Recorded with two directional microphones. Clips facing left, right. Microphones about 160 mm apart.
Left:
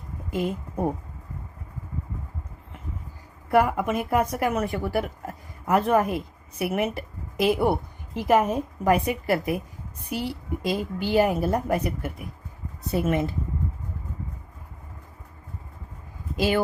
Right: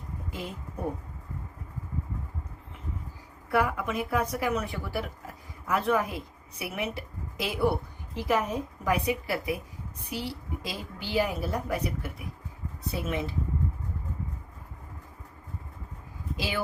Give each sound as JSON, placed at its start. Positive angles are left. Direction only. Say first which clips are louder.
{"t": 3.5, "sound": "a woman's voice", "louder": "left 6 dB", "side_deg": 50}
{"t": 16.4, "sound": "a woman's voice", "louder": "left 9 dB", "side_deg": 50}